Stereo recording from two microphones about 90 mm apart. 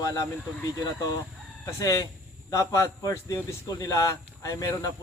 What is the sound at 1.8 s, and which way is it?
A man's voice, 40° left (ahead or behind).